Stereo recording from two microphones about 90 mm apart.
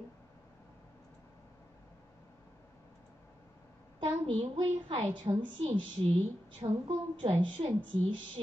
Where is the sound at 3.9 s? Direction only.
75° right (ahead or behind).